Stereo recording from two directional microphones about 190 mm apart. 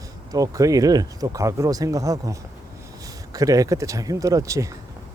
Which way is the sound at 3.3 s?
20° right (ahead or behind).